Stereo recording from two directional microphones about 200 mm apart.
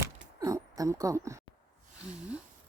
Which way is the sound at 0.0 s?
15° right (ahead or behind).